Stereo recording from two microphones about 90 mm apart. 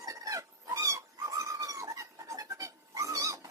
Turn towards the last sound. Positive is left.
turn(degrees=-40)  # may be behind; listen again after turning